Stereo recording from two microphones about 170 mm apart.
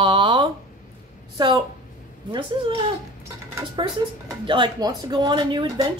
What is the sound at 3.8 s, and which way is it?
A woman's voice, 25° right (ahead or behind).